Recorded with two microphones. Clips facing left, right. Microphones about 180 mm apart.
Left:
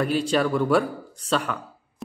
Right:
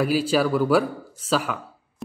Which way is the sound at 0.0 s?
5° right (ahead or behind).